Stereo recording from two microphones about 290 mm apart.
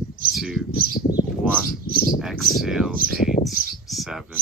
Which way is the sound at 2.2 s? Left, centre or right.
Centre.